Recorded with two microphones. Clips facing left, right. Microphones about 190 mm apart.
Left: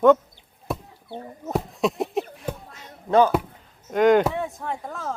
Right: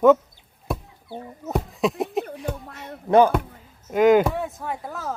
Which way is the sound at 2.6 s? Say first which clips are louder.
Right 6 dB; 65° right (ahead or behind).